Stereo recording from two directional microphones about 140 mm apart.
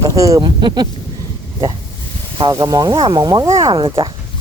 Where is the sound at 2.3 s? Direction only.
30° right (ahead or behind).